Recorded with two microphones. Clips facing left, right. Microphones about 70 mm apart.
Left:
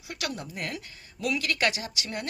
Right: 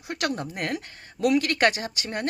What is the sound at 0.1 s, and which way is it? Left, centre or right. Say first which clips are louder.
Speech: right 6 dB; right.